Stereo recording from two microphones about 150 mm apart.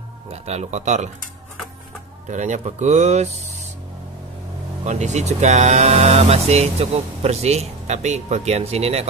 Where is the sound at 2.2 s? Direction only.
55° right (ahead or behind).